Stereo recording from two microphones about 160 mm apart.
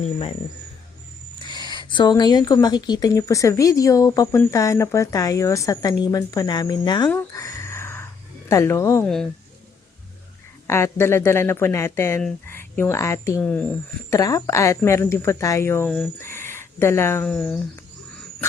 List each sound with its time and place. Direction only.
0.0 s speech: 40° left (ahead or behind)
1.4 s speech: 30° left (ahead or behind)
7.3 s a sound: 20° left (ahead or behind)
8.4 s speech: 15° left (ahead or behind)
9.0 s speech: 5° left (ahead or behind)
10.7 s speech: 15° left (ahead or behind)
14.2 s speech: 20° left (ahead or behind)
17.2 s speech: 5° left (ahead or behind)